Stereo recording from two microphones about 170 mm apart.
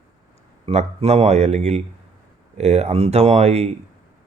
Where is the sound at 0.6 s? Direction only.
35° right (ahead or behind).